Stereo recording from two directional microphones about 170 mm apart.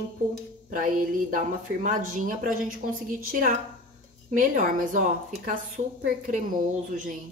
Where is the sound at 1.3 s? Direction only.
50° right (ahead or behind).